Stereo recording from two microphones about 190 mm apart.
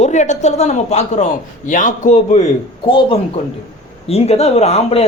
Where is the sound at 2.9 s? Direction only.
25° left (ahead or behind).